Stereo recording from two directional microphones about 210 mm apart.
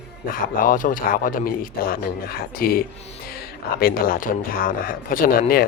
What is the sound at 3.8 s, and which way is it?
Speech, 45° left (ahead or behind).